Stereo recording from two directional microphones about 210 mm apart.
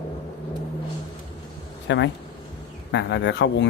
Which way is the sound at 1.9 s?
60° left (ahead or behind).